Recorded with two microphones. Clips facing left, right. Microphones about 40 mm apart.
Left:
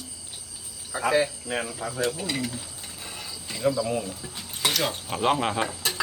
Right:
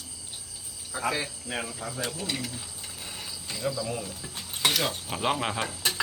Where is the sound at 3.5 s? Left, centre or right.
Centre.